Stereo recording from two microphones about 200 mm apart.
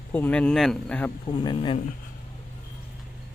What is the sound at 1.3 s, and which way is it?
Speech, 25° left (ahead or behind).